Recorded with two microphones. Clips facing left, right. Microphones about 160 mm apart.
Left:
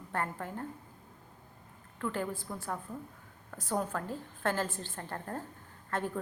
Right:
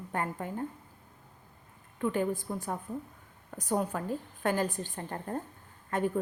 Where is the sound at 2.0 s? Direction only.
15° right (ahead or behind).